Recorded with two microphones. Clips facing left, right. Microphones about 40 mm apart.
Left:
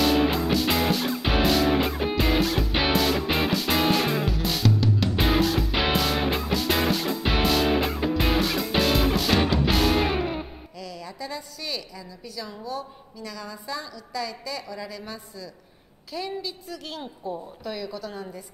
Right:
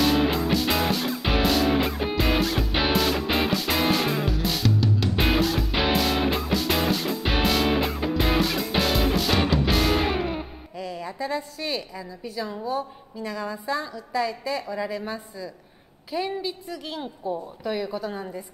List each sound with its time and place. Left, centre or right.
0.0 s music: centre
10.8 s a woman's voice: right
17.7 s a woman's voice: right